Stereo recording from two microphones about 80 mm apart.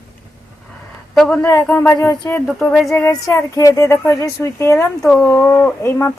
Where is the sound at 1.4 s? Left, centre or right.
Left.